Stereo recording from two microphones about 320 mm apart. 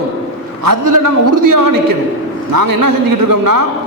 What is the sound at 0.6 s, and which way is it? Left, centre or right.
A man's voice, right.